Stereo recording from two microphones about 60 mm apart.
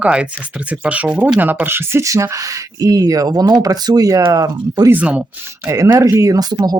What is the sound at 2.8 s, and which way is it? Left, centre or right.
Speech, right.